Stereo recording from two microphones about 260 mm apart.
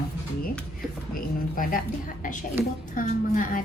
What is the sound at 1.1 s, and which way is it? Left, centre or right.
A woman's voice, left.